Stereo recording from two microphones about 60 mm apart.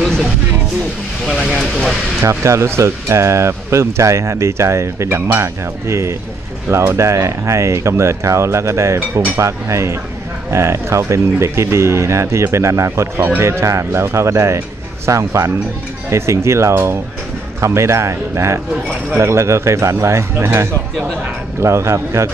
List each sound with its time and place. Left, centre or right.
2.2 s speech: right